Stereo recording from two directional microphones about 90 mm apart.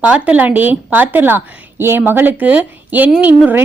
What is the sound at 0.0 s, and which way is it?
A woman's voice, 15° right (ahead or behind).